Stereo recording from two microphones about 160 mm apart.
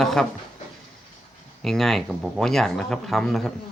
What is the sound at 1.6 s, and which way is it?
Speech, 5° left (ahead or behind).